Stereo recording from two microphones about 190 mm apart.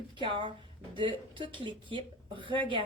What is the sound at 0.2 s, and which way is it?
A woman's voice, 25° right (ahead or behind).